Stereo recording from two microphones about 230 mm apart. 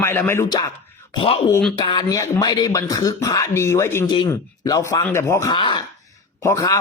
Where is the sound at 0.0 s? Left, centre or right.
Centre.